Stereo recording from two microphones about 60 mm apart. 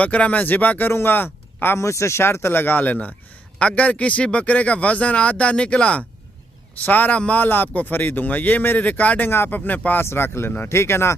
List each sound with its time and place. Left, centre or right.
0.0 s a man's voice: left
1.8 s speech: left
10.0 s speech: left